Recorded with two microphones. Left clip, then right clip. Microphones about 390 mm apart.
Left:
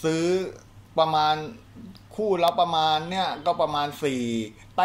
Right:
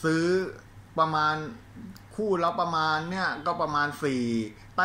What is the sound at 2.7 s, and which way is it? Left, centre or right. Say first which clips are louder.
Speech: left 4 dB; left.